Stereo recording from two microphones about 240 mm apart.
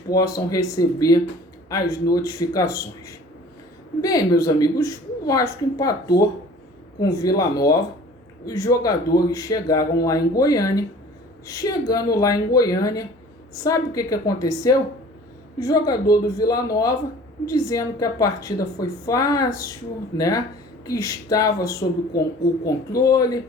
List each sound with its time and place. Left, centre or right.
0.1 s a woman's voice: centre
4.0 s a woman's voice: centre